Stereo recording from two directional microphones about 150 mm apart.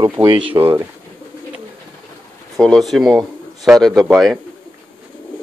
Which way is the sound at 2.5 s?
Centre (ahead or behind).